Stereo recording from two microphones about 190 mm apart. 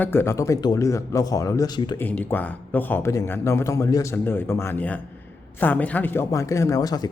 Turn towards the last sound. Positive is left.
turn(degrees=20)  # may be behind; listen again after turning